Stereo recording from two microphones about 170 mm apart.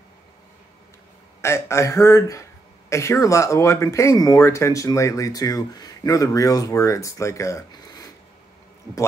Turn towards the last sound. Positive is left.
turn(degrees=20)  # may be behind; listen again after turning